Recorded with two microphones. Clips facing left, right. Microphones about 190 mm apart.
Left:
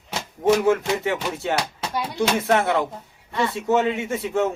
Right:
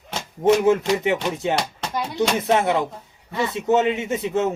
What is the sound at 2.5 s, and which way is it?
A man's voice, 20° right (ahead or behind).